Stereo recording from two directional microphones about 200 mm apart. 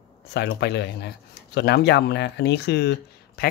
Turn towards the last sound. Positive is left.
turn(degrees=55)  # may be behind; listen again after turning